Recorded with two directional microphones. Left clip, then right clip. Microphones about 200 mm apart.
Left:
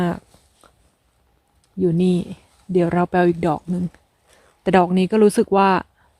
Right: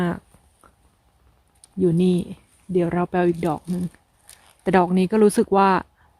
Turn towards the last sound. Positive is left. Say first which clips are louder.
# left 1 dB
turn(degrees=10)  # may be behind; listen again after turning